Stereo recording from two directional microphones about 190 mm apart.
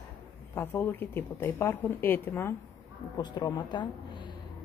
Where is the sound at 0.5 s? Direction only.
10° left (ahead or behind).